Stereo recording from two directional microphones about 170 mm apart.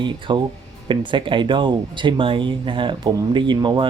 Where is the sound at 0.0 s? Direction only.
25° right (ahead or behind).